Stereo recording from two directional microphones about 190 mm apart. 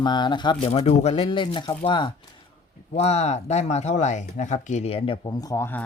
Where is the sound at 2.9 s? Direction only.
35° left (ahead or behind).